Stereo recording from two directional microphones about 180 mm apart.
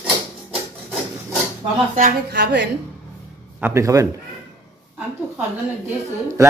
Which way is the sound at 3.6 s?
15° right (ahead or behind).